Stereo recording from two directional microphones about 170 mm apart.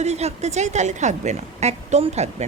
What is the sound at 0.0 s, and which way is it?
Speech, 40° right (ahead or behind).